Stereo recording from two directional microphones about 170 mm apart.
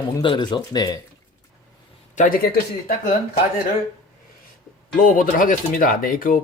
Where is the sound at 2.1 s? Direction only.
50° left (ahead or behind).